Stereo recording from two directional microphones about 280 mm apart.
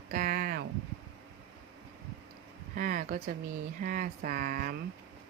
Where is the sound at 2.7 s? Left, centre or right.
Right.